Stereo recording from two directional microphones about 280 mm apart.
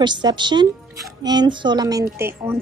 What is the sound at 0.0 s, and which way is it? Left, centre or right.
A woman's voice, centre.